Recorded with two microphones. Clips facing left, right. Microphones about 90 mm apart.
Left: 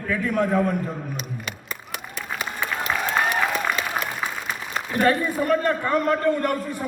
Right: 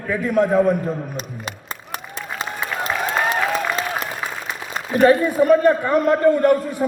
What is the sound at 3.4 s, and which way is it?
Applause, centre (ahead or behind).